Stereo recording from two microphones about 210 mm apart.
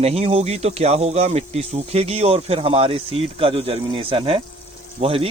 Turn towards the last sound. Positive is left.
turn(degrees=-30)  # may be behind; listen again after turning